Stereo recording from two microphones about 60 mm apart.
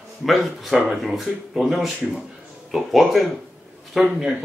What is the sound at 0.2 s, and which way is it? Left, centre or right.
A man's voice, centre.